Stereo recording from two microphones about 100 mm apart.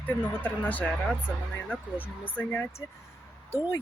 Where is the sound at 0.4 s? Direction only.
15° left (ahead or behind).